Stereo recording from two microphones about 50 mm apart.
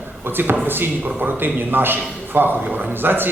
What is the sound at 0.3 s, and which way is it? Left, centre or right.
A man's voice, right.